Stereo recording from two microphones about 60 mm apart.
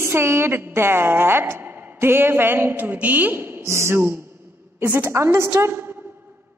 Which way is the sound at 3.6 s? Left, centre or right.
Right.